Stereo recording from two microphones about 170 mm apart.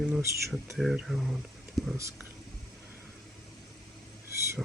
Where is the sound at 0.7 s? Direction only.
Centre (ahead or behind).